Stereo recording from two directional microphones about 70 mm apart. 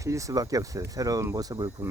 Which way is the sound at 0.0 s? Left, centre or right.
Right.